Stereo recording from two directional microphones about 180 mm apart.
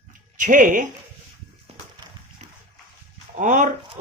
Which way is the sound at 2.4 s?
40° right (ahead or behind).